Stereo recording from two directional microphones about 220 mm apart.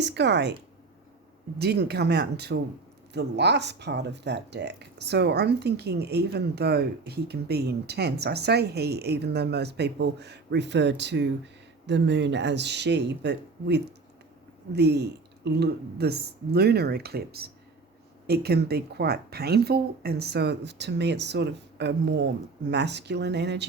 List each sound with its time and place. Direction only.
0.0 s speech: 50° right (ahead or behind)